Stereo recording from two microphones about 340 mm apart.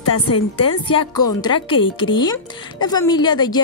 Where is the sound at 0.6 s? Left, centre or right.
Centre.